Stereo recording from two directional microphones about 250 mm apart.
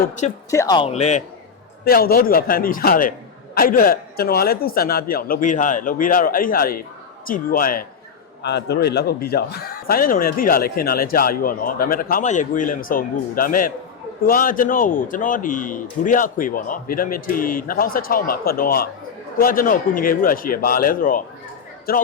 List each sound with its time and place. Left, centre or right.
0.5 s speech: centre
1.8 s speech: left